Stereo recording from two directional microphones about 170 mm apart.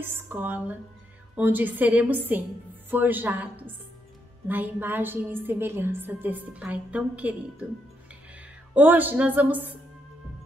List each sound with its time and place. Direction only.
0.0 s a woman's voice: 10° right (ahead or behind)
8.4 s speech: 10° right (ahead or behind)